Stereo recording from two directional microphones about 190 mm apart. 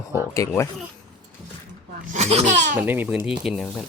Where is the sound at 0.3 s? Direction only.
15° left (ahead or behind).